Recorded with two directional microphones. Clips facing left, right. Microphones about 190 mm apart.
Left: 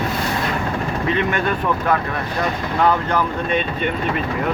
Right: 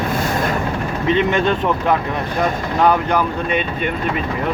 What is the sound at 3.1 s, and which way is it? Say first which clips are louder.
Speech: right 2 dB; 15° right (ahead or behind).